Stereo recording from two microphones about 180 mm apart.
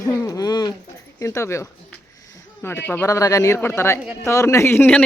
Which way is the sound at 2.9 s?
15° left (ahead or behind).